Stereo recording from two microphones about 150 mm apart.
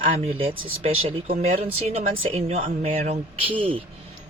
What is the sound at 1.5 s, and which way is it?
Speech, 40° right (ahead or behind).